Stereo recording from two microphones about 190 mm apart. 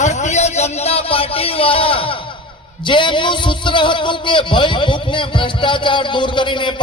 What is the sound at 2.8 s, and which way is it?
A man's voice, 25° left (ahead or behind).